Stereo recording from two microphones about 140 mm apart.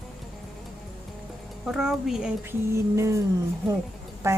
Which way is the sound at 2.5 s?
20° right (ahead or behind).